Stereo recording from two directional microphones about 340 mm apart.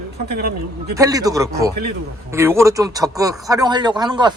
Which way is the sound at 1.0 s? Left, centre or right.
Centre.